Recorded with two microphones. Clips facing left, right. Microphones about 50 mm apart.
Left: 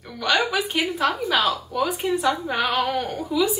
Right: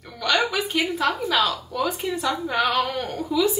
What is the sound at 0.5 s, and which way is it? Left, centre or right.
Speech, centre.